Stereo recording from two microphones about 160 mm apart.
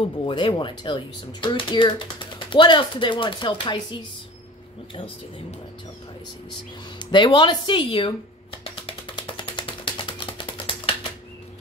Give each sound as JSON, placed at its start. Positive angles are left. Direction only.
{"t": 0.0, "sound": "speech", "side_deg": 30}
{"t": 7.0, "sound": "speech", "side_deg": 30}
{"t": 8.6, "sound": "a sound", "side_deg": 35}